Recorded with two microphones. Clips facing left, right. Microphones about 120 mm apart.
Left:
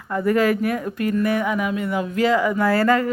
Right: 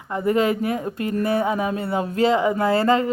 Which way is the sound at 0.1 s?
25° right (ahead or behind).